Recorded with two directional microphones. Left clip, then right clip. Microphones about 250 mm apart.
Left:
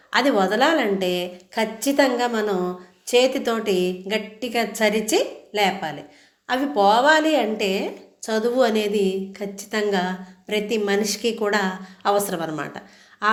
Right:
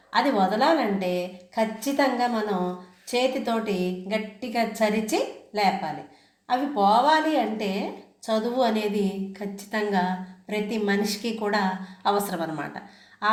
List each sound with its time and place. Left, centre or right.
0.1 s a woman's voice: left